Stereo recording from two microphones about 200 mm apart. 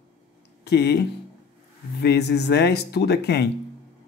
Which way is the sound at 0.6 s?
55° left (ahead or behind).